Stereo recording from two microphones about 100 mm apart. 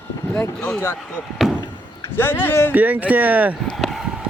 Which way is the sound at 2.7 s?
15° right (ahead or behind).